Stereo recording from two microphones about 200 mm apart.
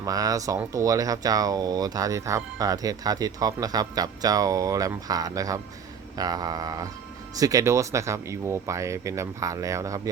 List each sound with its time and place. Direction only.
0.0 s speech: 15° right (ahead or behind)
6.1 s mantra: 20° right (ahead or behind)
7.3 s speech: 15° right (ahead or behind)